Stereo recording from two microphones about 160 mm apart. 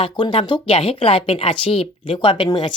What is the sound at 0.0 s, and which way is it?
Speech, 30° left (ahead or behind).